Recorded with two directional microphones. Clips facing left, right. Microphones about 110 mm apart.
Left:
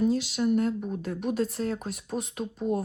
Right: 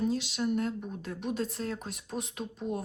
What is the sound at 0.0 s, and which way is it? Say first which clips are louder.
Speech: left 5 dB; centre (ahead or behind).